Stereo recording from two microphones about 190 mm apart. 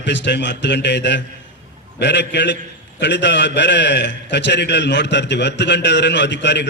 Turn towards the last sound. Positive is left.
turn(degrees=65)  # may be behind; listen again after turning